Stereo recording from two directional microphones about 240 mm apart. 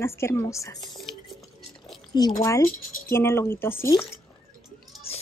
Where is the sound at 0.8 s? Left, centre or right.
Centre.